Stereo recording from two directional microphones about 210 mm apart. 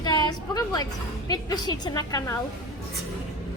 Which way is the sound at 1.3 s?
20° left (ahead or behind).